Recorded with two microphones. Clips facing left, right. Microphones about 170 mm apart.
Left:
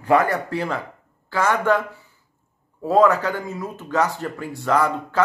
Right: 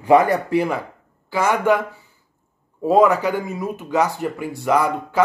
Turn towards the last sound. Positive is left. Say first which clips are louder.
# right 2 dB
turn(degrees=-15)  # may be behind; listen again after turning